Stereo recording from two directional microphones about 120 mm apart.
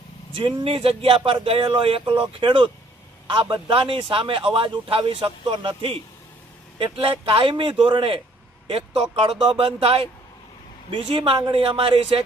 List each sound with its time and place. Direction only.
0.3 s a man's voice: 45° right (ahead or behind)